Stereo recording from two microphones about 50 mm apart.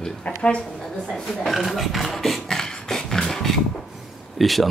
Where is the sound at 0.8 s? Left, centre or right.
Centre.